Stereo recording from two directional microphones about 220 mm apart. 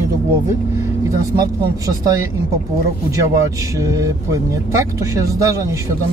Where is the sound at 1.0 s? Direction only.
15° right (ahead or behind).